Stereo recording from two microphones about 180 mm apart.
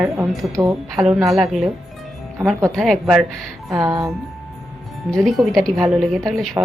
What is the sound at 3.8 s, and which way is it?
Speech, 20° right (ahead or behind).